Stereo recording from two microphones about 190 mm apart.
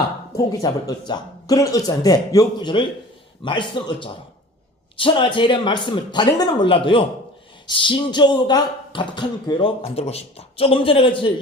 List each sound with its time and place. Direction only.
0.3 s speech: 20° left (ahead or behind)